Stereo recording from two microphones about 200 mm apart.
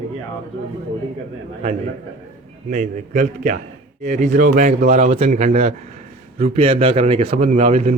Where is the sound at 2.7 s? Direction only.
35° right (ahead or behind).